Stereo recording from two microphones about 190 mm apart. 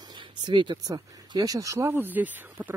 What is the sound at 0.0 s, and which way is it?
Speech, 25° right (ahead or behind).